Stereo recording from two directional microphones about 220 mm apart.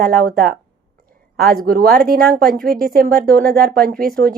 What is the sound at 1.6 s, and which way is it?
Speech, 45° right (ahead or behind).